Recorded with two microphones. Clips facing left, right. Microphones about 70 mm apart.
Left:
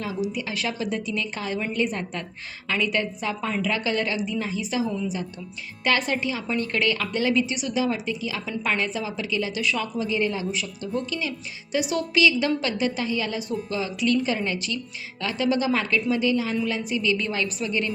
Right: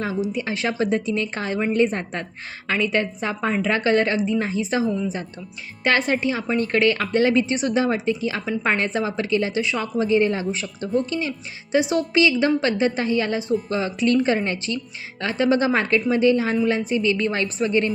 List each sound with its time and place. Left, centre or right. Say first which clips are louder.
0.0 s a woman's voice: right 4 dB; right
9.6 s a woman's voice: right 4 dB; right